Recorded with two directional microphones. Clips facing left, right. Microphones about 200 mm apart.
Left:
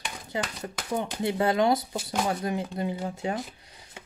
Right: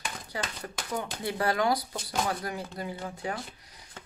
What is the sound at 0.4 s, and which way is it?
Speech, 20° left (ahead or behind).